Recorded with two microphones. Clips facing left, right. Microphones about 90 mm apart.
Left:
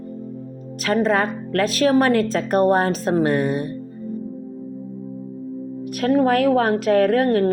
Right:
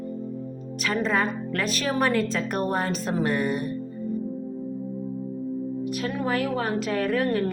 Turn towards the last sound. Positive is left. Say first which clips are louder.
# left 7 dB
turn(degrees=55)  # may be behind; listen again after turning